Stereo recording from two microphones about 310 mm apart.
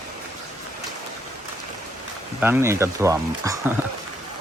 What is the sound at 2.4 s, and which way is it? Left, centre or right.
Speech, centre.